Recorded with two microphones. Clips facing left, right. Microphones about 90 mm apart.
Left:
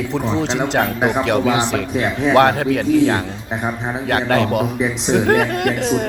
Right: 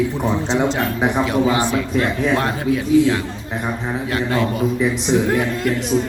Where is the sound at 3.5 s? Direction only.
20° left (ahead or behind).